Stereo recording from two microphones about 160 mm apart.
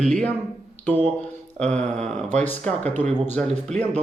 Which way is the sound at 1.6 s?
5° left (ahead or behind).